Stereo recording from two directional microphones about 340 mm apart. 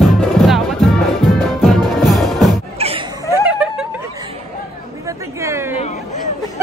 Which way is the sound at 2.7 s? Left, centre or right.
Centre.